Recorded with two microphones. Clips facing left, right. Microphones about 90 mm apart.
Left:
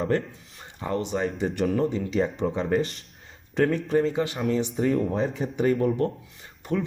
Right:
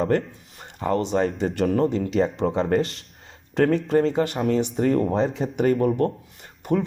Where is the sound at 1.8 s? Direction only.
90° right; by 2.8 s 70° right (ahead or behind).